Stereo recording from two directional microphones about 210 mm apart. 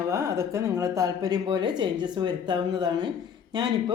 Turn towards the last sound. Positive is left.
turn(degrees=-20)  # may be behind; listen again after turning